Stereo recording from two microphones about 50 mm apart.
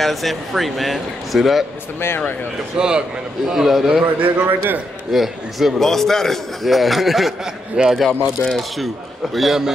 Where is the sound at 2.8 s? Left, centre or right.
Centre.